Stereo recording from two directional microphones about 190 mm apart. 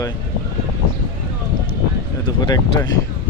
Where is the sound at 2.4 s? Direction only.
20° left (ahead or behind).